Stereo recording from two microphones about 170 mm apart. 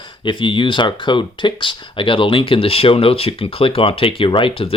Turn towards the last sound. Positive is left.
turn(degrees=30)  # may be behind; listen again after turning